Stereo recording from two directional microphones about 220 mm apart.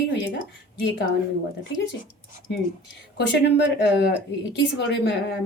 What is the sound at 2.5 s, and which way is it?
Speech, 50° left (ahead or behind).